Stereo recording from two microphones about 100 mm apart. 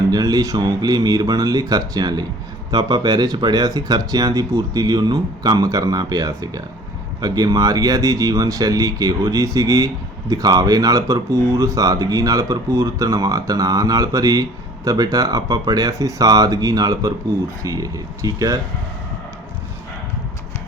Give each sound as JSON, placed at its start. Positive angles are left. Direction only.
{"t": 0.1, "sound": "speech", "side_deg": -40}